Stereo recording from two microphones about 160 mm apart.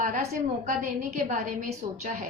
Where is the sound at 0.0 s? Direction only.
50° right (ahead or behind).